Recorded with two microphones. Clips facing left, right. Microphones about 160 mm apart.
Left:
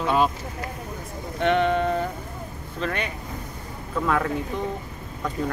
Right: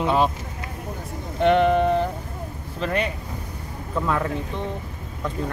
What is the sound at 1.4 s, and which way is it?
Speech, 5° right (ahead or behind).